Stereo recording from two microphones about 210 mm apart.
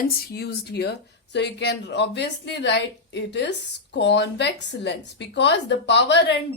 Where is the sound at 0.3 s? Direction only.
50° left (ahead or behind).